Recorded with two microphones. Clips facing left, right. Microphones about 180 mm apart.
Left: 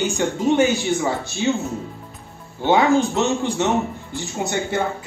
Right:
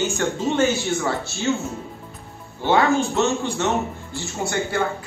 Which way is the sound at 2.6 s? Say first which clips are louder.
Left 2 dB; 15° left (ahead or behind).